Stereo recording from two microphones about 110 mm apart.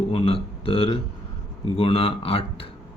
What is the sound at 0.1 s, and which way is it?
Speech, 55° left (ahead or behind).